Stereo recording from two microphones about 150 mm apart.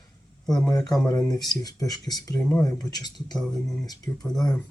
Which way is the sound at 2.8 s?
25° left (ahead or behind).